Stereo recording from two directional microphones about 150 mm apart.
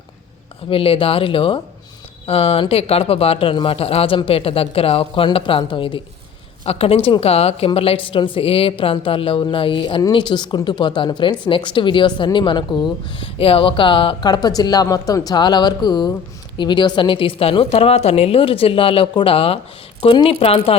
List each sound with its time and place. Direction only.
0.7 s a woman's voice: 40° left (ahead or behind)